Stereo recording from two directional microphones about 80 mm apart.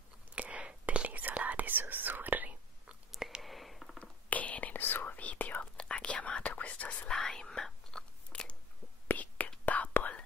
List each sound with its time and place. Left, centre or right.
0.3 s whispering: centre
3.1 s whispering: centre
3.4 s a sound: centre
4.0 s whispering: centre
9.0 s whispering: left